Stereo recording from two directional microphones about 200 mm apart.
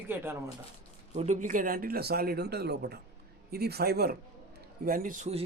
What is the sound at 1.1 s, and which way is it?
Speech, 35° right (ahead or behind).